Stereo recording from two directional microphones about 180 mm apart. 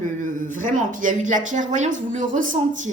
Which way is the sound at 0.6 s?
45° right (ahead or behind).